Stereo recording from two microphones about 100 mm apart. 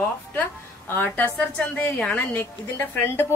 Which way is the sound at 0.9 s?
20° left (ahead or behind).